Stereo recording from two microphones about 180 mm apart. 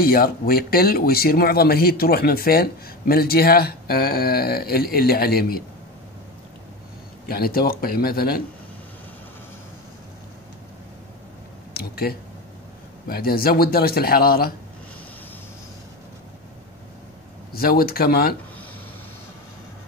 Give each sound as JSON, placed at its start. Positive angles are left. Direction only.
{"t": 0.0, "sound": "speech", "side_deg": 55}
{"t": 7.2, "sound": "speech", "side_deg": 55}
{"t": 11.7, "sound": "a sound", "side_deg": 60}
{"t": 13.1, "sound": "speech", "side_deg": 55}
{"t": 17.5, "sound": "speech", "side_deg": 55}